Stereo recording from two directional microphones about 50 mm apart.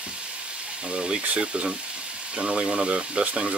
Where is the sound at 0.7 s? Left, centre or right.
Right.